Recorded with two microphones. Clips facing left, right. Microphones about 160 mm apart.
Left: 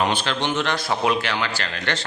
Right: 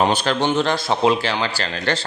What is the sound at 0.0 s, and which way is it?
A man's voice, 40° right (ahead or behind).